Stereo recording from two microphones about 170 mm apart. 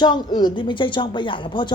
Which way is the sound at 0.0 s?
25° left (ahead or behind).